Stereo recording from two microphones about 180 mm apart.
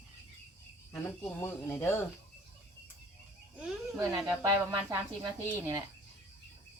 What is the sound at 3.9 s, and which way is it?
Speech, 20° right (ahead or behind).